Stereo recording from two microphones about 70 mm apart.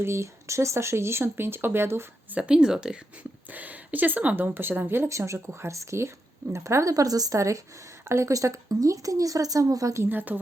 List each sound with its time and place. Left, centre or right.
0.0 s speech: right
2.5 s speech: centre
3.5 s speech: right
7.3 s a woman's voice: right
10.1 s speech: right